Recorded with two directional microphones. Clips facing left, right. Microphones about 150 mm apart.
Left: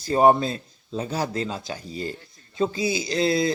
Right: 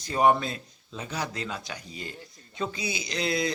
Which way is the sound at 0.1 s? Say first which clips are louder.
Left 5 dB; 35° left (ahead or behind).